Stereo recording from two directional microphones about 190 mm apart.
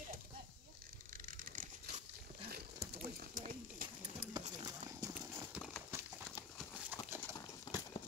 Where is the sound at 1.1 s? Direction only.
45° right (ahead or behind).